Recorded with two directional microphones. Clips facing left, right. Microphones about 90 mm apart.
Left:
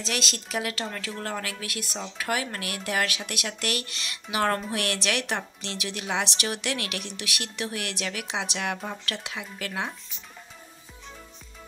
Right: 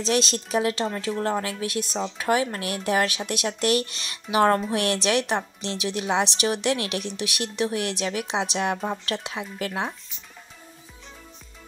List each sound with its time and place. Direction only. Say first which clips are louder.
0.0 s speech: right 8 dB; 30° right (ahead or behind)